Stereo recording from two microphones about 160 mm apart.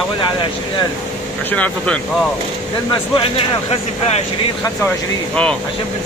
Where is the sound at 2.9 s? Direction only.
35° left (ahead or behind).